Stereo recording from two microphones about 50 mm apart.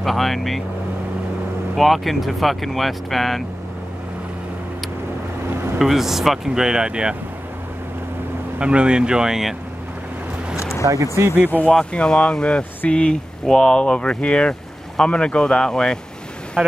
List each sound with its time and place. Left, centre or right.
0.0 s speech: centre
1.8 s speech: centre
5.8 s speech: centre
8.5 s speech: right
10.6 s a sound: left
10.9 s speech: right
11.8 s speech: centre
16.6 s speech: centre